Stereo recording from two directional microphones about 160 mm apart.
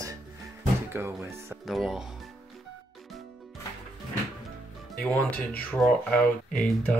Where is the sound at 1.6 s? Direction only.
Centre (ahead or behind).